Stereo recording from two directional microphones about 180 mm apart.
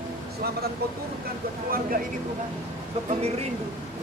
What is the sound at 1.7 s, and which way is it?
Speech, 50° right (ahead or behind).